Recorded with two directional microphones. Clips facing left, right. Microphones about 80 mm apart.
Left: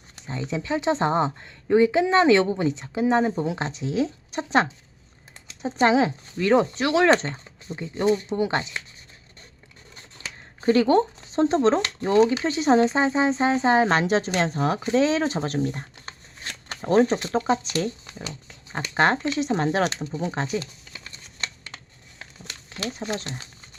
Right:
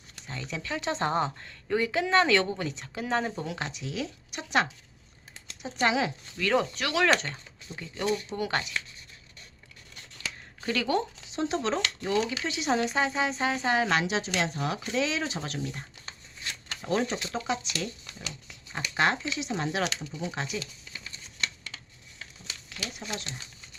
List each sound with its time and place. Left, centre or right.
0.2 s speech: left
9.9 s speech: left
21.3 s a sound: left
22.9 s speech: left